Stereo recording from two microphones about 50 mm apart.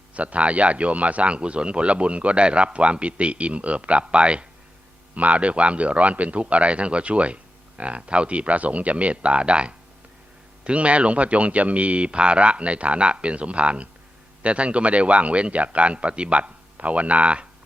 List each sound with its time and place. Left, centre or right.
0.1 s speech: right